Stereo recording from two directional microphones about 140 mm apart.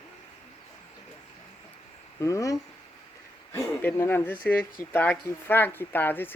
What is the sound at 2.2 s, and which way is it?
Speech, 25° left (ahead or behind).